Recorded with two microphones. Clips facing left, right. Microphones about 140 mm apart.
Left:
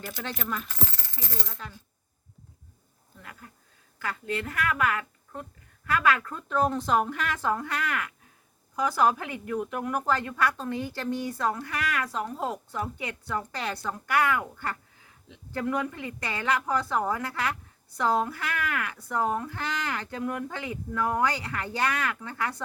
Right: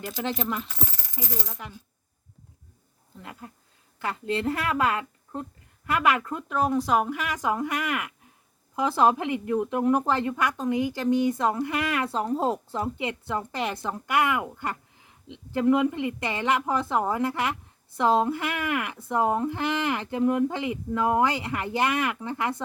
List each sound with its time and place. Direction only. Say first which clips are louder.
0.0 s speech: right 6 dB; 20° right (ahead or behind)
3.2 s speech: right 5 dB; 25° right (ahead or behind)
6.5 s speech: right 1 dB; 5° right (ahead or behind)